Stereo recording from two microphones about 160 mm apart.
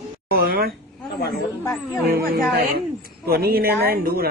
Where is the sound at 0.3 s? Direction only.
70° right (ahead or behind).